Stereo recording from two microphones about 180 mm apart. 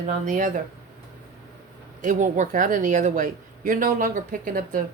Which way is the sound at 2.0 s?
45° right (ahead or behind).